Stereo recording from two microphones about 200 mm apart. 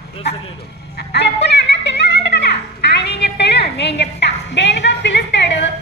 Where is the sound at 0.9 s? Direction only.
55° left (ahead or behind).